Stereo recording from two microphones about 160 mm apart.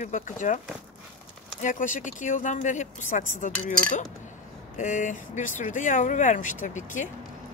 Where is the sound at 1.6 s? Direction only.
55° left (ahead or behind).